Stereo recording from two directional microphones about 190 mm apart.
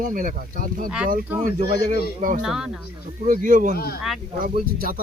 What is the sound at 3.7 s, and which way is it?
Speech, 55° left (ahead or behind).